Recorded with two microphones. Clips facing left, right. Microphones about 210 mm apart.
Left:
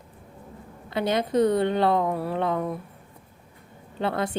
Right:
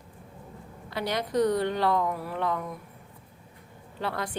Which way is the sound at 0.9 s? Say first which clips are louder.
Left 6 dB; 25° left (ahead or behind).